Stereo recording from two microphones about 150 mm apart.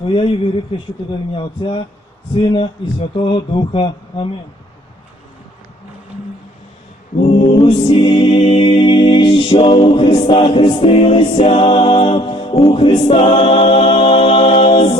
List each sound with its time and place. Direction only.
0.0 s music: 35° left (ahead or behind)
7.3 s music: 35° left (ahead or behind)